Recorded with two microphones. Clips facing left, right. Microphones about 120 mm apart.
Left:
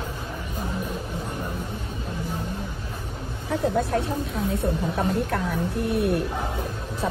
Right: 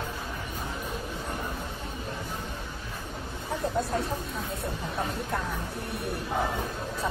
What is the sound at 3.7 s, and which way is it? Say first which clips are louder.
A woman's voice: left 5 dB; 70° left (ahead or behind).